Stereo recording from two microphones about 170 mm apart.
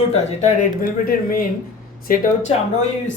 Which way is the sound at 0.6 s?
60° left (ahead or behind).